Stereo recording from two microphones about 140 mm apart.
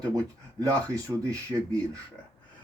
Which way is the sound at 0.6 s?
25° right (ahead or behind).